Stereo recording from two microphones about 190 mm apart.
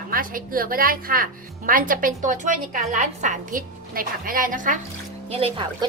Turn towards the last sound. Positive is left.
turn(degrees=-25)  # may be behind; listen again after turning